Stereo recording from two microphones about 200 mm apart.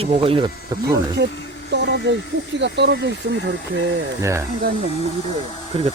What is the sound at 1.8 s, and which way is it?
Speech, 55° right (ahead or behind).